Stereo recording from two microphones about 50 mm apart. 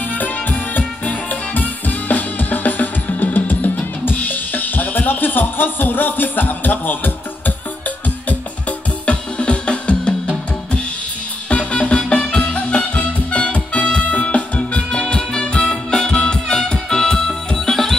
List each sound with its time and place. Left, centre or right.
0.1 s music: left
9.0 s music: left
11.4 s music: left; by 17.9 s centre